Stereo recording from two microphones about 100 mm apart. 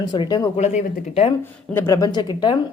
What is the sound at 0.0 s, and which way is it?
Speech, 45° left (ahead or behind).